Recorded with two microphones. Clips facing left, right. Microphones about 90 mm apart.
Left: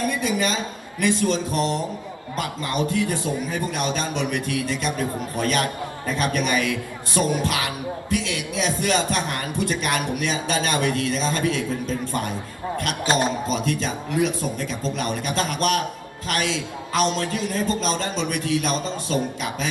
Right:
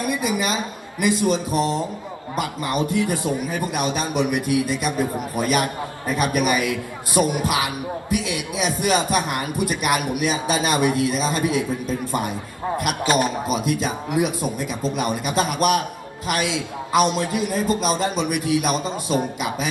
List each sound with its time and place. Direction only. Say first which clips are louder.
0.0 s a man's voice: even; 15° right (ahead or behind)
13.1 s a man's voice: right 1 dB; 30° left (ahead or behind)
13.5 s speech: right 2 dB; 15° right (ahead or behind)